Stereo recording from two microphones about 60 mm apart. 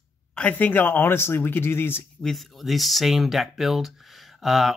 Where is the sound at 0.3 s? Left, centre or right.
Centre.